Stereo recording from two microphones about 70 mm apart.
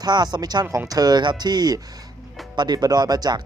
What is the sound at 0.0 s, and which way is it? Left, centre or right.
Speech, right.